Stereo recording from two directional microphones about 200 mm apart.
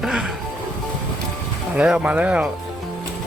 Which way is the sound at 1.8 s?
5° right (ahead or behind).